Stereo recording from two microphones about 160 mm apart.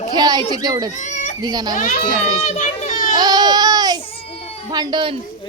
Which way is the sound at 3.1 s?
25° right (ahead or behind).